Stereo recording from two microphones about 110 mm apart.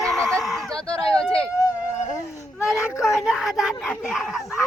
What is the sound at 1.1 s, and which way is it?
Speech, 10° left (ahead or behind).